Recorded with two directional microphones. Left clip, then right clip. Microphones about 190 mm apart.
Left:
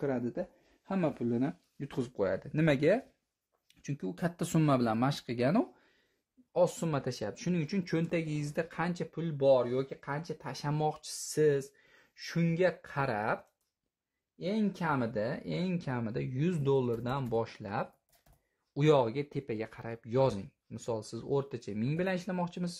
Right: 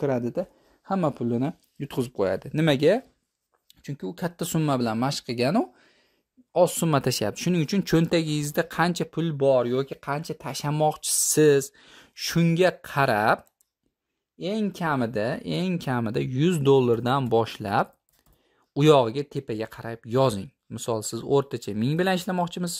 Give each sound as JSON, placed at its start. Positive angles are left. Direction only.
{"t": 0.0, "sound": "speech", "side_deg": -40}
{"t": 3.6, "sound": "speech", "side_deg": -25}
{"t": 6.5, "sound": "speech", "side_deg": -45}
{"t": 14.4, "sound": "speech", "side_deg": -45}
{"t": 18.7, "sound": "speech", "side_deg": -40}